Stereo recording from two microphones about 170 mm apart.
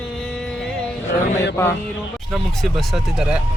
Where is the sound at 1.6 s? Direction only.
20° left (ahead or behind).